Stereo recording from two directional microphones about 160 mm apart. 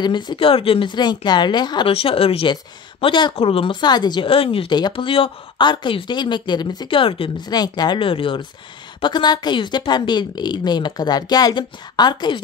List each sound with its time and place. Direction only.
0.0 s speech: 30° left (ahead or behind)